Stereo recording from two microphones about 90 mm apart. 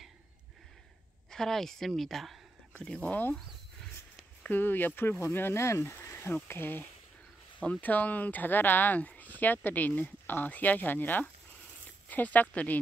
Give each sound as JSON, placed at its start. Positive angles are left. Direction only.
{"t": 1.3, "sound": "speech", "side_deg": 5}
{"t": 4.4, "sound": "speech", "side_deg": 20}